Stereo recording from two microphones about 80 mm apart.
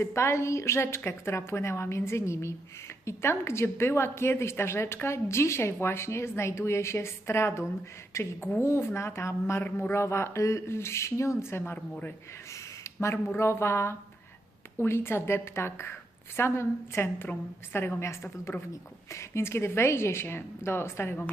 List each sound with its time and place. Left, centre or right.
0.0 s a woman's voice: left
9.6 s a man's voice: left
9.9 s a woman's voice: left
12.8 s a woman's voice: left